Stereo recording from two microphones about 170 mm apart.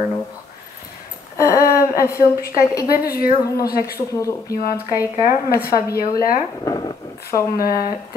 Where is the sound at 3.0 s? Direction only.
60° left (ahead or behind).